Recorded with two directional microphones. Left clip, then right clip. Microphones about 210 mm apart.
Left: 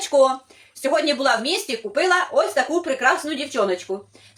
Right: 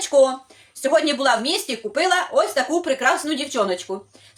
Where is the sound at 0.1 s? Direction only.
15° right (ahead or behind).